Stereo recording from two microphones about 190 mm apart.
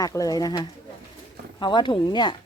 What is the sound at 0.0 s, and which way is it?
Speech, 15° left (ahead or behind).